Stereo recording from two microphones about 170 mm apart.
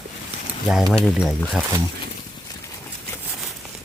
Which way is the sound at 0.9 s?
5° left (ahead or behind).